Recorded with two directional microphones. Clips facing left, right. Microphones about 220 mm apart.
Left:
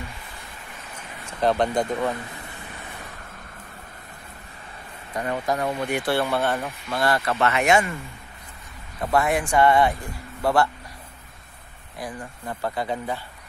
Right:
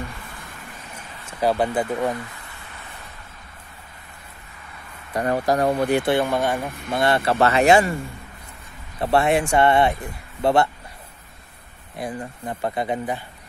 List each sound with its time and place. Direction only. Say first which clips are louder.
0.9 s a sound: left 1 dB; 10° right (ahead or behind)
5.2 s speech: right 5 dB; 40° right (ahead or behind)
6.1 s speech: right 2 dB; 15° right (ahead or behind)
6.9 s speech: right 3 dB; 25° right (ahead or behind)
9.0 s speech: right 3 dB; 30° right (ahead or behind)
12.0 s speech: right 4 dB; 20° right (ahead or behind)